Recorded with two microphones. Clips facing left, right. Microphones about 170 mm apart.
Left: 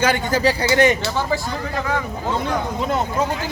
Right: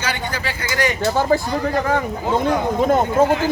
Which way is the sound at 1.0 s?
45° right (ahead or behind).